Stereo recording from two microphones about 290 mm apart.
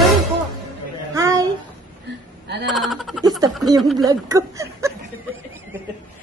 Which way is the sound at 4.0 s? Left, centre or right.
Centre.